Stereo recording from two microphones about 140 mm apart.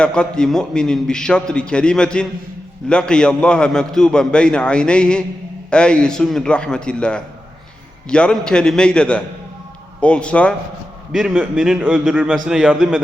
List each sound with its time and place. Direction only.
0.0 s a man's voice: 5° left (ahead or behind)
11.1 s a man's voice: 5° right (ahead or behind)